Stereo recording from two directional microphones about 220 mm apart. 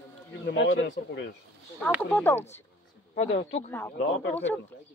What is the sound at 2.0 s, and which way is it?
Speech, 10° left (ahead or behind).